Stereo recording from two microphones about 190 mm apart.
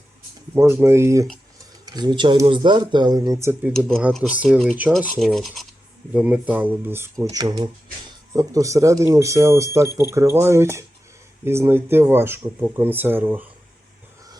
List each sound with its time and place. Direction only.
0.5 s speech: 15° right (ahead or behind)
3.7 s speech: 5° left (ahead or behind)